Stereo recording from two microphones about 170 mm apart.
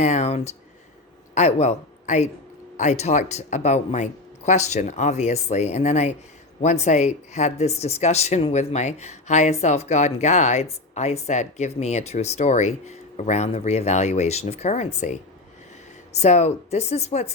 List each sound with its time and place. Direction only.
0.0 s speech: 40° left (ahead or behind)
16.1 s speech: 40° left (ahead or behind)